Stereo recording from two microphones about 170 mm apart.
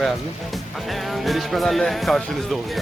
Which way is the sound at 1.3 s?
Centre (ahead or behind).